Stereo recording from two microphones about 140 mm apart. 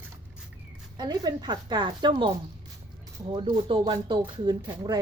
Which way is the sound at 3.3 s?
40° right (ahead or behind).